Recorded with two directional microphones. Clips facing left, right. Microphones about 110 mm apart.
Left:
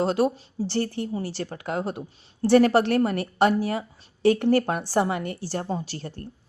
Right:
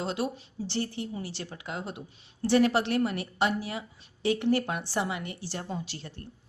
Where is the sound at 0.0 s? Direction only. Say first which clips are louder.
Left 9 dB; 45° left (ahead or behind).